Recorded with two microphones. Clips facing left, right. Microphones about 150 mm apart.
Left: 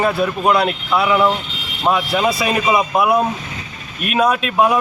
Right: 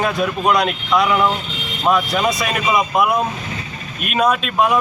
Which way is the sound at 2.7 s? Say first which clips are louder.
Even; 30° left (ahead or behind).